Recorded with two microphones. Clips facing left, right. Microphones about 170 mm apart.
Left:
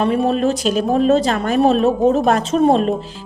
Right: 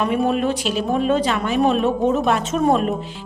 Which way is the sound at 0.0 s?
30° left (ahead or behind).